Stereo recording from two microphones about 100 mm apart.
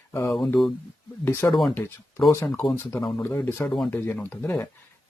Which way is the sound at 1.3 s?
30° left (ahead or behind).